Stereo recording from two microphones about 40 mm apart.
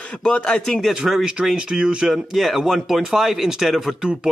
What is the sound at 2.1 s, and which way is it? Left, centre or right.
Speech, centre.